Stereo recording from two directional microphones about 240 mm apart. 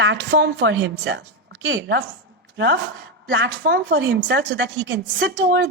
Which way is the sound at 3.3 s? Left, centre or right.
Right.